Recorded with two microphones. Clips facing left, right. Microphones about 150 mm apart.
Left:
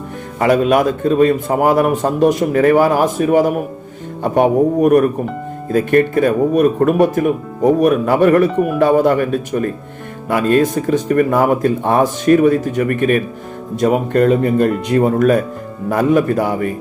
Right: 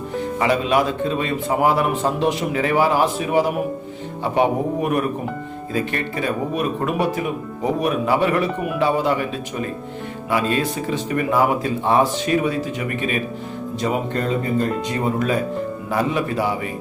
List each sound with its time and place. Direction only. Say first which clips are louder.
0.3 s speech: left 6 dB; 50° left (ahead or behind)